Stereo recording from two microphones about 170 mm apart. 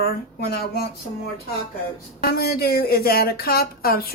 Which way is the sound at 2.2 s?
65° left (ahead or behind).